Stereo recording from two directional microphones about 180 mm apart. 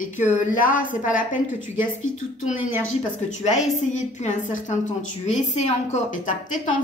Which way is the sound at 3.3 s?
40° left (ahead or behind).